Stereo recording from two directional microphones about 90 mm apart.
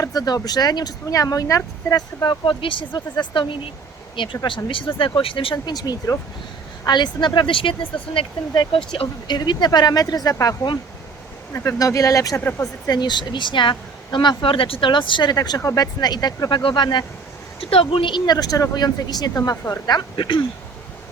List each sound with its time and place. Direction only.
0.0 s speech: 45° left (ahead or behind)
2.2 s speech: 60° left (ahead or behind); by 5.5 s 90° left
5.6 s speech: 45° left (ahead or behind); by 9.0 s 75° left (ahead or behind)
9.2 s speech: 55° left (ahead or behind)
12.4 s speech: 25° left (ahead or behind)
12.9 s speech: 55° left (ahead or behind)
16.6 s speech: 60° left (ahead or behind)
17.6 s speech: 90° left; by 19.3 s 50° left (ahead or behind)
19.9 s speech: 60° left (ahead or behind)